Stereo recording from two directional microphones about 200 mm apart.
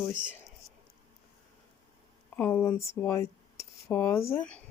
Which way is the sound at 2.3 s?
10° left (ahead or behind).